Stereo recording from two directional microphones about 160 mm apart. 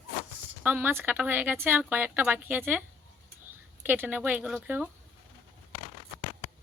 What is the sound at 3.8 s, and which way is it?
Speech, 10° right (ahead or behind).